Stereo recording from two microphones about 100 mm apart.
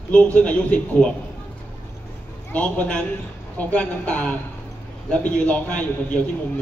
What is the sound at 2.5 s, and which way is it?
A man's voice, 15° left (ahead or behind).